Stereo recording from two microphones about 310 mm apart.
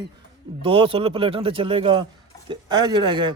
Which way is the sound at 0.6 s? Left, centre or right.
Centre.